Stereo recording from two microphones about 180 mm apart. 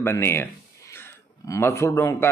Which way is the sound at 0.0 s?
15° left (ahead or behind).